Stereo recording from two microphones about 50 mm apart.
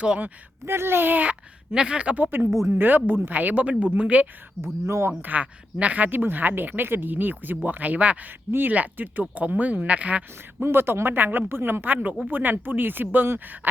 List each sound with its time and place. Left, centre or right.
0.6 s speech: right
1.7 s speech: centre
4.6 s speech: right
5.0 s speech: right
6.1 s speech: right
10.6 s speech: right